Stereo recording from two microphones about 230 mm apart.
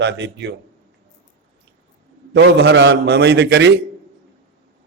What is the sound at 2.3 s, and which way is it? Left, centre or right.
A man's voice, right.